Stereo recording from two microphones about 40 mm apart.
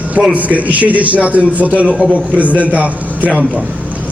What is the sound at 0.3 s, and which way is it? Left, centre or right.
A man's voice, right.